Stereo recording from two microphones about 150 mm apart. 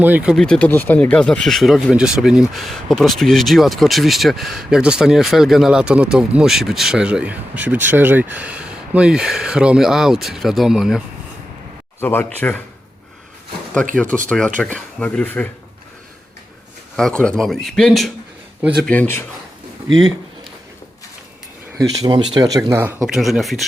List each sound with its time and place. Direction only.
0.0 s speech: 10° right (ahead or behind)
0.3 s speech: 5° left (ahead or behind)
11.9 s speech: 15° left (ahead or behind)
13.9 s speech: 10° left (ahead or behind)
17.0 s speech: 5° left (ahead or behind)
21.8 s speech: 30° right (ahead or behind)
23.1 s speech: centre (ahead or behind)